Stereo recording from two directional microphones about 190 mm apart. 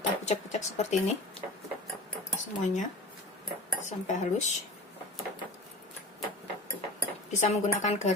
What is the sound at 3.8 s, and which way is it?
Speech, 40° left (ahead or behind).